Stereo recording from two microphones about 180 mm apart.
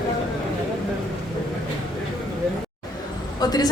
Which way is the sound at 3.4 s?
20° left (ahead or behind).